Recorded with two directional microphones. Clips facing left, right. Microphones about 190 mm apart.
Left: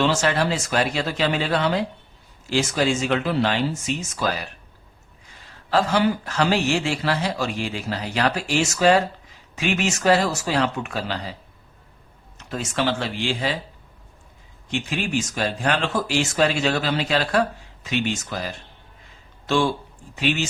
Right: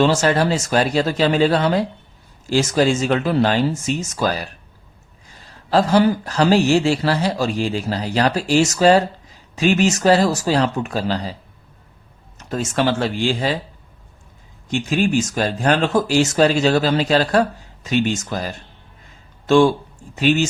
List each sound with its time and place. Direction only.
0.0 s a man's voice: 40° right (ahead or behind)
5.7 s a man's voice: 40° right (ahead or behind)
12.4 s speech: 45° right (ahead or behind)
14.7 s a man's voice: 45° right (ahead or behind)